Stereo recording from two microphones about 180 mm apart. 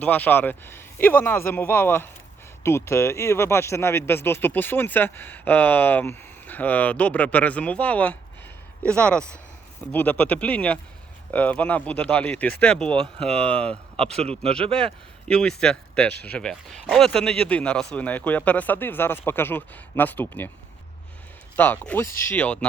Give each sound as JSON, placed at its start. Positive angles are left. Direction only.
{"t": 0.0, "sound": "a man's voice", "side_deg": 10}
{"t": 13.9, "sound": "a man's voice", "side_deg": -35}
{"t": 15.3, "sound": "a man's voice", "side_deg": 5}
{"t": 21.5, "sound": "speech", "side_deg": 10}